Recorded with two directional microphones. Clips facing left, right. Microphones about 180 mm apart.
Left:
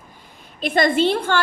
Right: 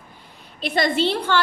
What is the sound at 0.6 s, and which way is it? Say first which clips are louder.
Speech: left 3 dB; 50° left (ahead or behind).